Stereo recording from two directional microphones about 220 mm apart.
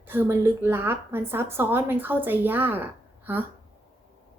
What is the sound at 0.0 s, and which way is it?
A woman's voice, 10° right (ahead or behind).